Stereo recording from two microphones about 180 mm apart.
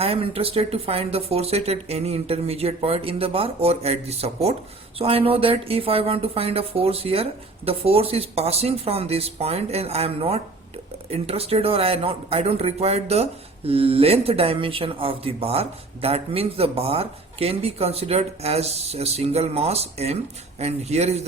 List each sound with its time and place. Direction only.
0.0 s speech: 30° right (ahead or behind)